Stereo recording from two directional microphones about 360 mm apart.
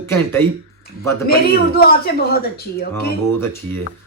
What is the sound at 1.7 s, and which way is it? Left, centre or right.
Speech, left.